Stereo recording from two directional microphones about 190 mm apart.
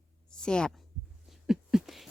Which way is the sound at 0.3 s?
5° left (ahead or behind).